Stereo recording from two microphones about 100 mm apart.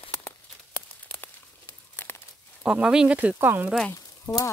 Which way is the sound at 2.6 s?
5° right (ahead or behind).